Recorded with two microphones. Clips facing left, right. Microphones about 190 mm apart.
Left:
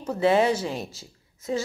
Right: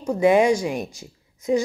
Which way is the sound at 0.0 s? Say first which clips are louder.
Right 4 dB; 15° right (ahead or behind).